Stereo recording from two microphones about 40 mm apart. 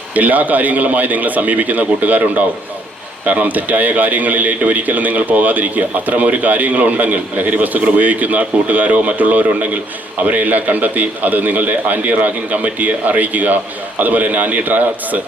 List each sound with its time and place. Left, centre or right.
0.1 s speech: right